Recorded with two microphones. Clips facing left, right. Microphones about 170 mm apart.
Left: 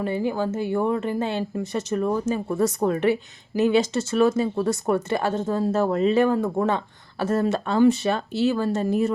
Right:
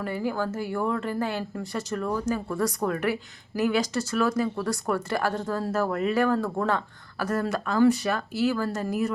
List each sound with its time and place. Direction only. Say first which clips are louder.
0.0 s speech: left 4 dB; 20° left (ahead or behind)